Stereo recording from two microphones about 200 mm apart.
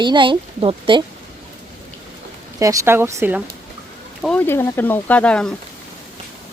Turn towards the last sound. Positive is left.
turn(degrees=5)  # may be behind; listen again after turning